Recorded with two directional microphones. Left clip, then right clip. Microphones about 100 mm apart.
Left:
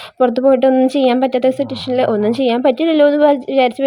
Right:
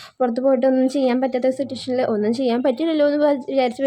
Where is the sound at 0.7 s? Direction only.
25° left (ahead or behind).